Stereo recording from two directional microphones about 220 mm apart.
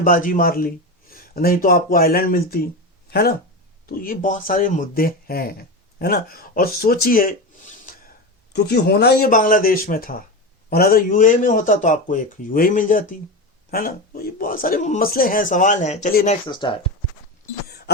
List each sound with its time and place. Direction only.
0.0 s speech: 40° left (ahead or behind)
16.5 s speech: 20° left (ahead or behind)